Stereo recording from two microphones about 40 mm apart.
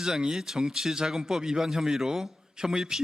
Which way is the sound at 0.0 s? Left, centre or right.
Centre.